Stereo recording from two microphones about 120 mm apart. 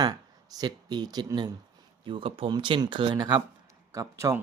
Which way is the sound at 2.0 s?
45° right (ahead or behind).